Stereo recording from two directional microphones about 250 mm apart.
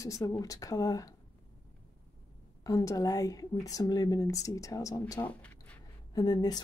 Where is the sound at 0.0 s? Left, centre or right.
Centre.